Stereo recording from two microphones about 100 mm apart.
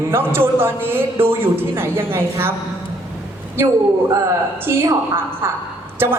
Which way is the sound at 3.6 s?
25° right (ahead or behind).